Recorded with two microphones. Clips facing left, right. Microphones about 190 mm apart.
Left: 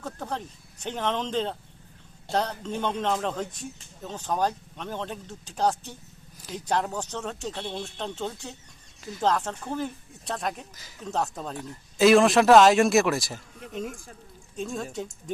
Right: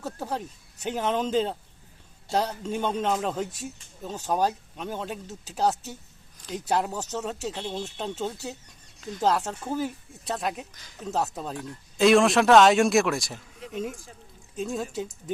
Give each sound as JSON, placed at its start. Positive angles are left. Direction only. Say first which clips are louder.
{"t": 0.0, "sound": "speech", "louder": "right 2 dB", "side_deg": -10}